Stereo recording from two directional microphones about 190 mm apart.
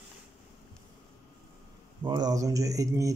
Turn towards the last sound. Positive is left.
turn(degrees=-15)  # may be behind; listen again after turning